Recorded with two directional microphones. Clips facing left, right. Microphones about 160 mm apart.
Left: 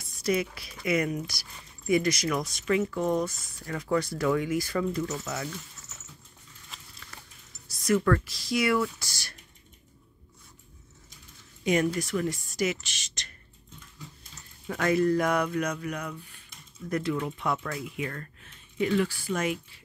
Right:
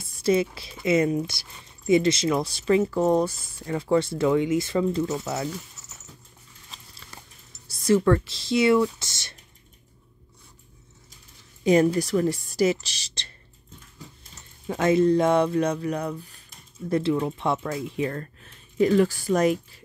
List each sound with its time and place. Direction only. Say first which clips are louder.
0.0 s speech: right 6 dB; 25° right (ahead or behind)
7.6 s speech: right 5 dB; 30° right (ahead or behind)
11.6 s speech: right 6 dB; 35° right (ahead or behind)
14.7 s speech: right 5 dB; 25° right (ahead or behind); by 19.8 s 40° right (ahead or behind)